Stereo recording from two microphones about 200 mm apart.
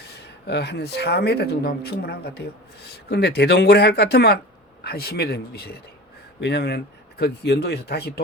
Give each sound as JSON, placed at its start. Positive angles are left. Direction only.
{"t": 0.1, "sound": "speech", "side_deg": 55}